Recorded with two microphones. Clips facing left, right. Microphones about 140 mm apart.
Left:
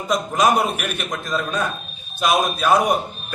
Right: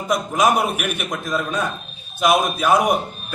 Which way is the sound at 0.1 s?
10° right (ahead or behind).